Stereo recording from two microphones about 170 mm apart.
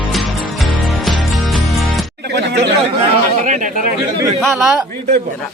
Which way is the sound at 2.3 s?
80° right.